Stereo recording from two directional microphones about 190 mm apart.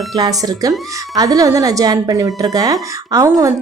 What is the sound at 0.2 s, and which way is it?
A woman's voice, 20° right (ahead or behind).